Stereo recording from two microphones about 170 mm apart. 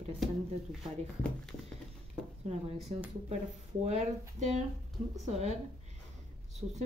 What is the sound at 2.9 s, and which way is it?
Speech, 35° right (ahead or behind).